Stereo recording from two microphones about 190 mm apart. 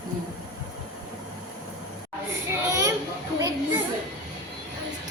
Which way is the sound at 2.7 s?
15° right (ahead or behind).